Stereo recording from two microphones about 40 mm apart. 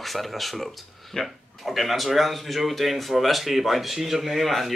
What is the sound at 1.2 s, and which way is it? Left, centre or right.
Speech, left.